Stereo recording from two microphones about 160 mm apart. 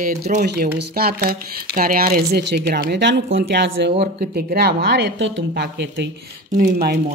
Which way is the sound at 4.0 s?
75° right (ahead or behind).